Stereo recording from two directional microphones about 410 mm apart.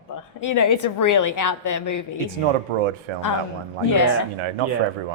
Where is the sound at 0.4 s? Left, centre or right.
Left.